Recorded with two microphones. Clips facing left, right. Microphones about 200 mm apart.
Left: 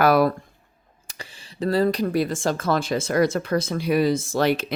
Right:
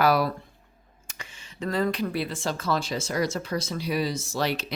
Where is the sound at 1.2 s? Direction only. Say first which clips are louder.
Left 6 dB; 35° left (ahead or behind); by 4.7 s 55° left (ahead or behind).